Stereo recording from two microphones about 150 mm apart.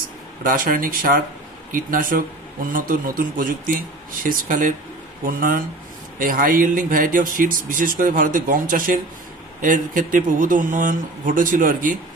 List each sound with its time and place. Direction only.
0.4 s speech: 65° right (ahead or behind)